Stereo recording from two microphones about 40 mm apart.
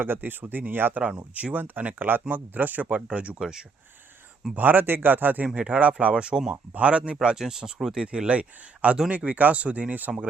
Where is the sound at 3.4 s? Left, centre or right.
Centre.